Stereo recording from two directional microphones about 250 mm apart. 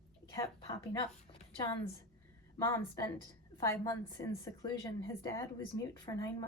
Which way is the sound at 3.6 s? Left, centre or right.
Centre.